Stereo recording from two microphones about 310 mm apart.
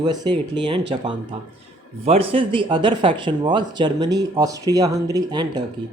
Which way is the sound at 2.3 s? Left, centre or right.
Centre.